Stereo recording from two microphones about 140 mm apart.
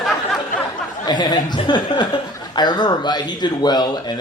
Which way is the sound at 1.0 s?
30° left (ahead or behind).